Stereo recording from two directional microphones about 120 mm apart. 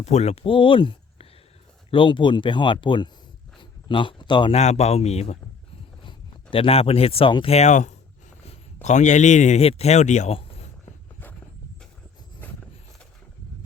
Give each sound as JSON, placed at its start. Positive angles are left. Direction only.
{"t": 0.0, "sound": "speech", "side_deg": 65}
{"t": 0.4, "sound": "speech", "side_deg": 45}
{"t": 3.6, "sound": "a sound", "side_deg": 40}
{"t": 4.5, "sound": "speech", "side_deg": 65}
{"t": 6.0, "sound": "speech", "side_deg": 45}
{"t": 7.5, "sound": "a man's voice", "side_deg": 75}